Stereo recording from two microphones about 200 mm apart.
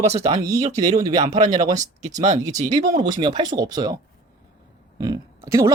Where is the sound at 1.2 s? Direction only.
35° right (ahead or behind).